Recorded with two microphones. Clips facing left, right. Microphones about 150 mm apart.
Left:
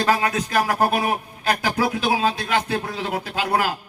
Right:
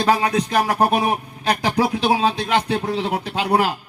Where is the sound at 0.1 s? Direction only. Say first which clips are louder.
Right 4 dB; 20° right (ahead or behind).